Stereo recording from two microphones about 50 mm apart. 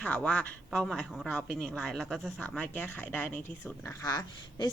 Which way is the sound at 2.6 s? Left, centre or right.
Left.